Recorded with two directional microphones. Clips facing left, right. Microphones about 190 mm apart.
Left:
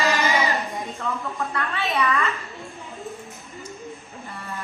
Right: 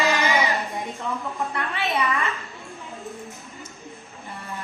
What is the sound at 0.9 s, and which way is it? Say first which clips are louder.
A woman's voice: left 1 dB; 15° right (ahead or behind).